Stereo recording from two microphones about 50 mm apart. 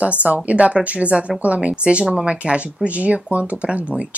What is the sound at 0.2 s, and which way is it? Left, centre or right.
Speech, right.